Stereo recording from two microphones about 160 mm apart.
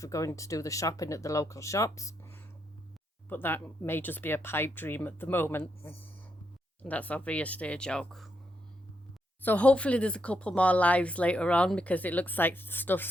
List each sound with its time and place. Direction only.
0.0 s speech: 20° left (ahead or behind); by 8.3 s 5° left (ahead or behind)
9.4 s speech: 10° left (ahead or behind)